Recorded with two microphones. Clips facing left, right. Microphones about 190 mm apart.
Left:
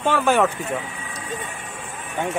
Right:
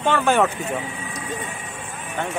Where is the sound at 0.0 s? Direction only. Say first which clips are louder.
Even; 5° left (ahead or behind).